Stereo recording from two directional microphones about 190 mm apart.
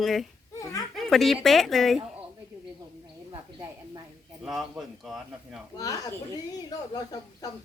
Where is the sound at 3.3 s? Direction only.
15° right (ahead or behind).